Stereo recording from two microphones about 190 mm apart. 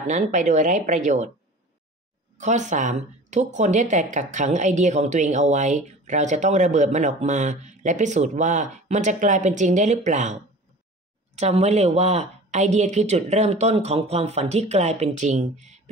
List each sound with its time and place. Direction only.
0.0 s speech: 40° right (ahead or behind)
2.3 s speech: 40° right (ahead or behind)